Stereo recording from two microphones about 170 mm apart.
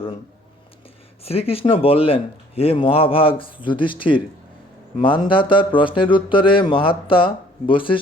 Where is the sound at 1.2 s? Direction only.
35° left (ahead or behind).